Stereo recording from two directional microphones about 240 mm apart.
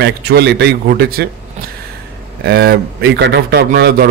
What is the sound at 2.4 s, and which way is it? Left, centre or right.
A man's voice, right.